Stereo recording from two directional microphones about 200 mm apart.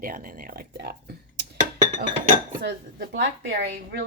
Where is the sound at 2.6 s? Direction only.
60° right (ahead or behind).